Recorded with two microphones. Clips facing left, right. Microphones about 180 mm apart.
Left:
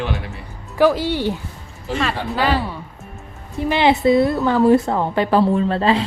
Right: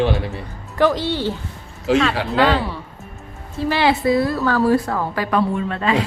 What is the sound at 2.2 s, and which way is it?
Speech, 85° right.